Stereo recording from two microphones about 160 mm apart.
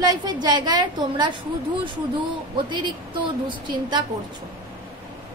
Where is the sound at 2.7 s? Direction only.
30° right (ahead or behind).